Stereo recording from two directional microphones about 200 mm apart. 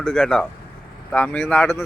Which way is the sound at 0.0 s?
5° left (ahead or behind).